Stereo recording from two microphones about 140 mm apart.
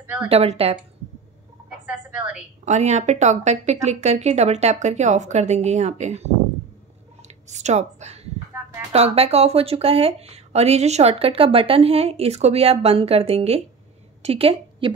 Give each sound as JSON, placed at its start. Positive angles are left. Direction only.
{"t": 0.0, "sound": "a woman's voice", "side_deg": -10}
{"t": 0.3, "sound": "speech", "side_deg": -45}
{"t": 1.9, "sound": "a sound", "side_deg": -10}
{"t": 2.6, "sound": "a woman's voice", "side_deg": -55}